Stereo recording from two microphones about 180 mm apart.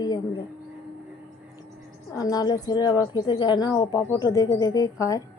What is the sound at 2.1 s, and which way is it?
Speech, 20° left (ahead or behind).